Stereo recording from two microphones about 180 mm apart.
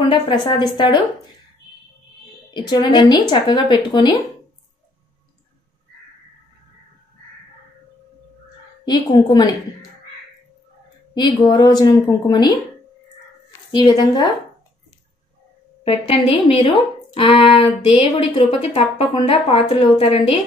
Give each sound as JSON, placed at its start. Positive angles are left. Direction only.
{"t": 0.1, "sound": "a woman's voice", "side_deg": 25}
{"t": 2.5, "sound": "a woman's voice", "side_deg": 25}
{"t": 8.8, "sound": "a woman's voice", "side_deg": 25}
{"t": 11.1, "sound": "a woman's voice", "side_deg": 25}
{"t": 13.7, "sound": "a woman's voice", "side_deg": 25}
{"t": 15.8, "sound": "a woman's voice", "side_deg": 30}